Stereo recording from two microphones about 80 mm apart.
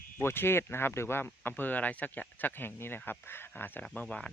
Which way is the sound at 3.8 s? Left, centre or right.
Centre.